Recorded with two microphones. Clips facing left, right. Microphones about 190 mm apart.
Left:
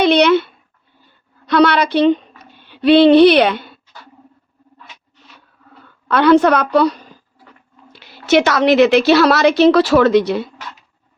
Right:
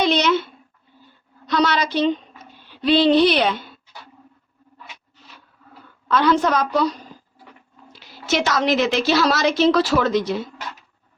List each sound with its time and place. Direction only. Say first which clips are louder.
0.0 s a sound: left 7 dB; 65° left (ahead or behind)
1.5 s speech: left 7 dB; 65° left (ahead or behind)
6.1 s a woman's voice: left 7 dB; 65° left (ahead or behind)